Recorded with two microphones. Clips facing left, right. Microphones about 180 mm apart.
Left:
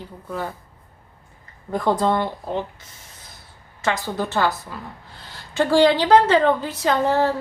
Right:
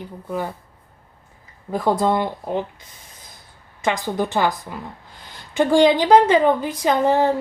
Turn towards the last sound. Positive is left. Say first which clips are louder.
# right 2 dB
turn(degrees=-15)  # may be behind; listen again after turning